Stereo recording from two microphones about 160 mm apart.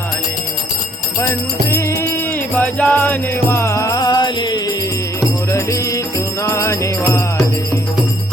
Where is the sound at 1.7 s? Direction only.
15° left (ahead or behind).